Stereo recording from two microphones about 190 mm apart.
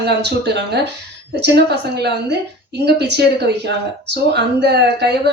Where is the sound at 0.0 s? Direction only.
60° right (ahead or behind).